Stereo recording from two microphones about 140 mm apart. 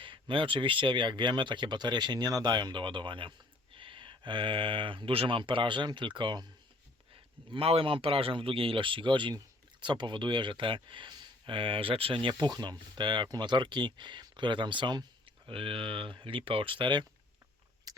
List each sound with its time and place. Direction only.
0.0 s speech: 35° right (ahead or behind)
17.9 s chewing: 25° right (ahead or behind)